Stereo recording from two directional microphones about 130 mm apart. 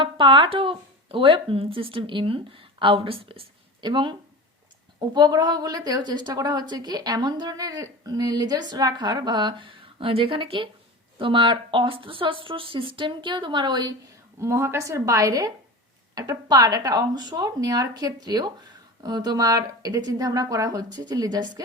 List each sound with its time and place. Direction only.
0.0 s a woman's voice: 40° right (ahead or behind)
14.3 s a woman's voice: 20° right (ahead or behind)